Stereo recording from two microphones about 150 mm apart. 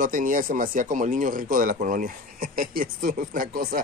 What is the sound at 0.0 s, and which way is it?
Speech, 65° right (ahead or behind).